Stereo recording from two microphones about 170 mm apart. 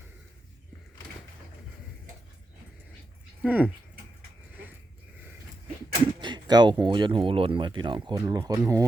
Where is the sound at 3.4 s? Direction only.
10° right (ahead or behind).